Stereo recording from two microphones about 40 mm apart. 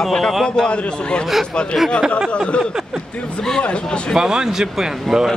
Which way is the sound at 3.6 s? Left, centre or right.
Left.